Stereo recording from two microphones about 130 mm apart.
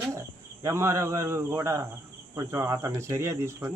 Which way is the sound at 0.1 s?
20° right (ahead or behind).